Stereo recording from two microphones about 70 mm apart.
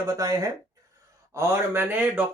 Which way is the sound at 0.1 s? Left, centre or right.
Right.